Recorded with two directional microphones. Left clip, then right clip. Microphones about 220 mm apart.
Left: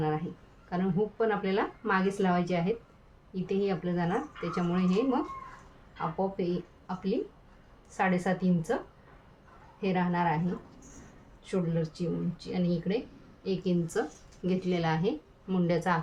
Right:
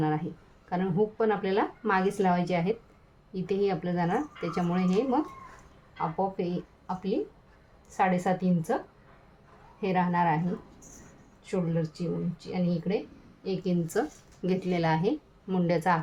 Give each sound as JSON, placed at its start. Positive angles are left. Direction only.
{"t": 0.7, "sound": "a woman's voice", "side_deg": -25}
{"t": 9.8, "sound": "a woman's voice", "side_deg": -20}